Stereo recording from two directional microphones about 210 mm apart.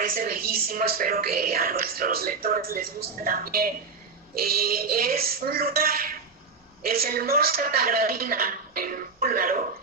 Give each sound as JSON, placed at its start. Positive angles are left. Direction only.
{"t": 0.0, "sound": "a woman's voice", "side_deg": -45}